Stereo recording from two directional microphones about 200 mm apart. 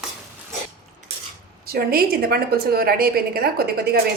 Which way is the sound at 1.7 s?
50° right (ahead or behind).